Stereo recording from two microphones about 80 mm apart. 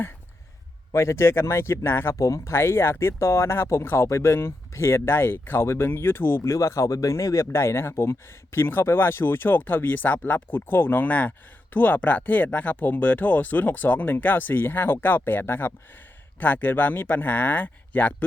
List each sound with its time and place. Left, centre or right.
0.9 s speech: left
2.1 s speech: left